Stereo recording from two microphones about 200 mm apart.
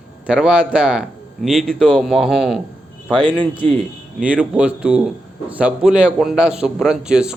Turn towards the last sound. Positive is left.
turn(degrees=-5)  # may be behind; listen again after turning